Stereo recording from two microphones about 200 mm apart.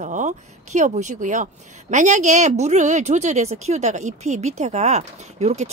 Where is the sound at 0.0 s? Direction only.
40° right (ahead or behind).